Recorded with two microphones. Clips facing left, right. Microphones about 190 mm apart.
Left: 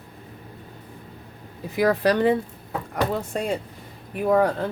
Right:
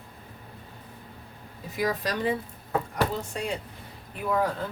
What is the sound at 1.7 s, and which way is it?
Speech, 60° left (ahead or behind).